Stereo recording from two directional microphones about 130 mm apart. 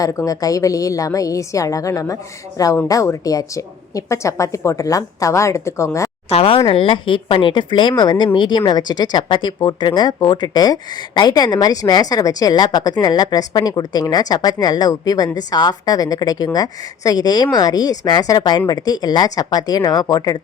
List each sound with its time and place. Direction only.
0.0 s a woman's voice: 25° left (ahead or behind)
6.2 s speech: 50° left (ahead or behind); by 20.4 s 30° left (ahead or behind)